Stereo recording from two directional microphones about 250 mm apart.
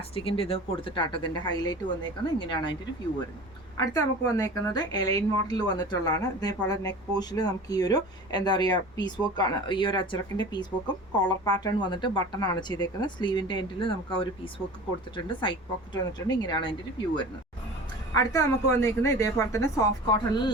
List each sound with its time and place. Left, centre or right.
0.1 s speech: left
3.8 s speech: centre
18.1 s speech: centre